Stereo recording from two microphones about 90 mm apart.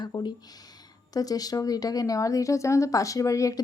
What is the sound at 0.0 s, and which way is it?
A woman's voice, 55° left (ahead or behind).